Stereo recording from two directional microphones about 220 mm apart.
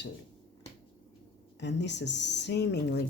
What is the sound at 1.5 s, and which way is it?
Speech, 50° left (ahead or behind).